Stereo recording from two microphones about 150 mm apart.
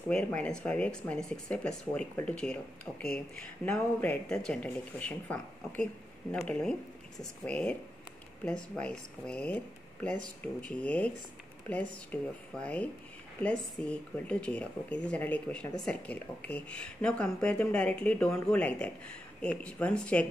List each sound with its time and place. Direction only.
0.1 s speech: 10° left (ahead or behind)